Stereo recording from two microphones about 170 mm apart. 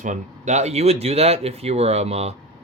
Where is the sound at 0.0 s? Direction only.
45° right (ahead or behind).